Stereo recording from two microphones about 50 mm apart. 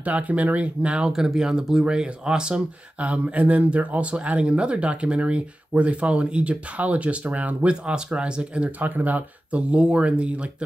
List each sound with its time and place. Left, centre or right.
0.0 s speech: right
1.1 s speech: centre